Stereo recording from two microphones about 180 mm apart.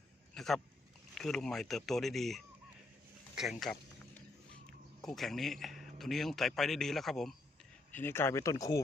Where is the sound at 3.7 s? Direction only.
5° left (ahead or behind).